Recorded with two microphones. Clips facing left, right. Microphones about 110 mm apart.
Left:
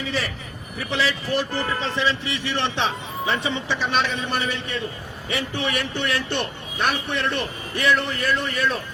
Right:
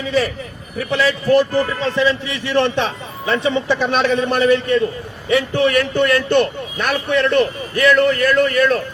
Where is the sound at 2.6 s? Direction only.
50° right (ahead or behind).